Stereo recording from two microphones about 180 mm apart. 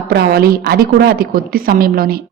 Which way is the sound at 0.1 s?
60° right (ahead or behind).